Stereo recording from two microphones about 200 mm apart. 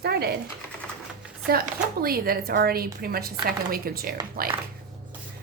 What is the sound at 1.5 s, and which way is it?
A woman's voice, 50° right (ahead or behind).